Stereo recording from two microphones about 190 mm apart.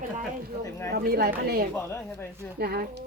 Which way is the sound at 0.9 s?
55° right (ahead or behind).